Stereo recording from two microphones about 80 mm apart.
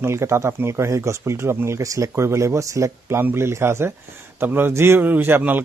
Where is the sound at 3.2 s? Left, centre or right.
Right.